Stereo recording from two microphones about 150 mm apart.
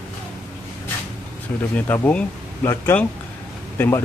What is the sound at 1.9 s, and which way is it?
Speech, 10° left (ahead or behind).